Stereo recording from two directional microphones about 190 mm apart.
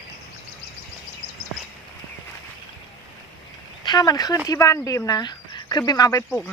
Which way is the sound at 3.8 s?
20° left (ahead or behind).